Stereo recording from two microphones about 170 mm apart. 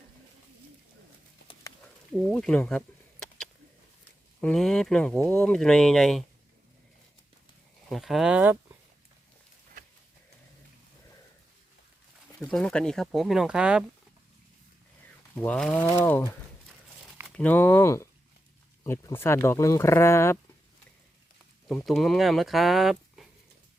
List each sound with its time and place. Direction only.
2.1 s a sound: 5° left (ahead or behind)
4.4 s speech: 5° left (ahead or behind)
7.9 s speech: centre (ahead or behind)
12.5 s speech: 5° left (ahead or behind)
15.4 s speech: 5° left (ahead or behind)
17.3 s speech: 10° left (ahead or behind)
21.7 s speech: centre (ahead or behind)